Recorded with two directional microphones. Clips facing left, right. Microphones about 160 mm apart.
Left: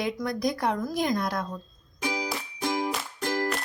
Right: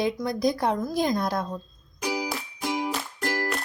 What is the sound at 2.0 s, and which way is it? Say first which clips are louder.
Music: right 2 dB; 5° right (ahead or behind).